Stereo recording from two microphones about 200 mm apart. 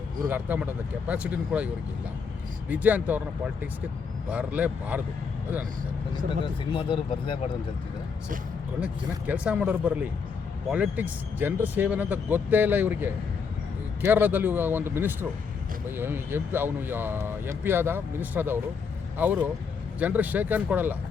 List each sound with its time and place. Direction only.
0.3 s speech: 10° right (ahead or behind)
6.4 s speech: 25° left (ahead or behind)
8.8 s speech: 5° right (ahead or behind)